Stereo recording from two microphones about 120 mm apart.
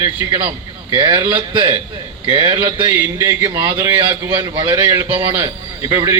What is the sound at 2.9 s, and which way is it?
A man's voice, 20° right (ahead or behind).